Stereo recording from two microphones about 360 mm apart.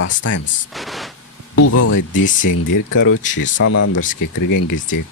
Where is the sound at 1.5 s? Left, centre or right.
Left.